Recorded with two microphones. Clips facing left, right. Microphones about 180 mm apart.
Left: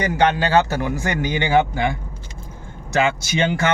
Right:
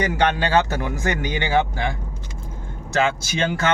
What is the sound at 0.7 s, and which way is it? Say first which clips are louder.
Speech: left 3 dB; 45° left (ahead or behind).